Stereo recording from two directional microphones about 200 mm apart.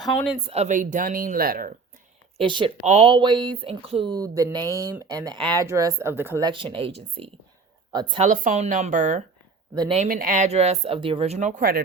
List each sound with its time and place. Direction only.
0.4 s speech: 35° right (ahead or behind)
2.4 s speech: 25° right (ahead or behind)
4.6 s speech: 15° left (ahead or behind)
4.9 s speech: 20° right (ahead or behind)
6.5 s speech: 25° right (ahead or behind)
8.2 s speech: 35° right (ahead or behind)